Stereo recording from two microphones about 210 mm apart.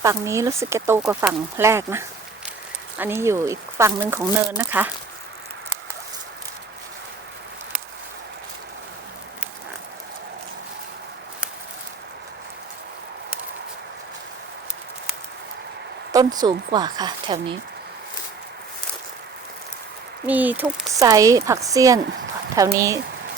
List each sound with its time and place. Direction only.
0.0 s speech: 15° right (ahead or behind)
16.1 s speech: 20° right (ahead or behind)
20.2 s speech: 10° right (ahead or behind)
21.0 s speech: 15° right (ahead or behind)